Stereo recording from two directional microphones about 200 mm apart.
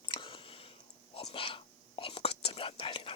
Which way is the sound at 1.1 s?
25° left (ahead or behind).